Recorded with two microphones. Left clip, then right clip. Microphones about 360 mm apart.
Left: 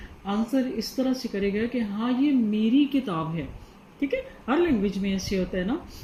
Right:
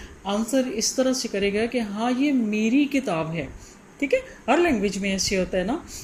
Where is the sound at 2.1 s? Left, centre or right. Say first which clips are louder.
Even; right.